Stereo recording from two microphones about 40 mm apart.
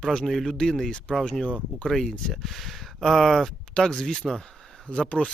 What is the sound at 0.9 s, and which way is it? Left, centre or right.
Speech, left.